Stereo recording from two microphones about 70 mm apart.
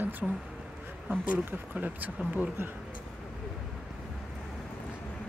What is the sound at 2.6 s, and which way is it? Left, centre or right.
Speech, right.